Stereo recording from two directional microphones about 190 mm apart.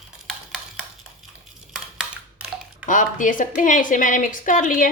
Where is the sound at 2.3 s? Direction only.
5° right (ahead or behind).